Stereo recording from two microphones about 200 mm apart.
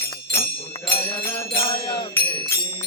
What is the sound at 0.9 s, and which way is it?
Mantra, 10° left (ahead or behind).